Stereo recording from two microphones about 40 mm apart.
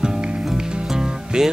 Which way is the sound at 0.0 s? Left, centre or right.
Centre.